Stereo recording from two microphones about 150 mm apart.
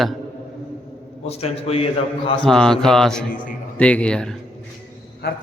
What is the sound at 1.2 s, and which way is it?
Speech, 45° left (ahead or behind).